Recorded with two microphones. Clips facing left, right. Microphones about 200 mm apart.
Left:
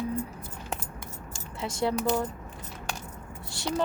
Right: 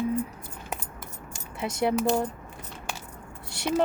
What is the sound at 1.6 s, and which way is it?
Speech, 20° right (ahead or behind).